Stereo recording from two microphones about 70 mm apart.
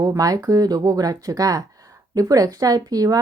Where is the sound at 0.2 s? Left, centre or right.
Right.